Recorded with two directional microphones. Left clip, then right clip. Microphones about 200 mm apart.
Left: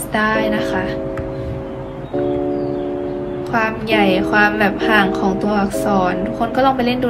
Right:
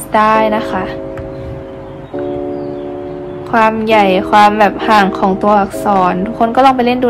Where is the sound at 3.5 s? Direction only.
25° right (ahead or behind).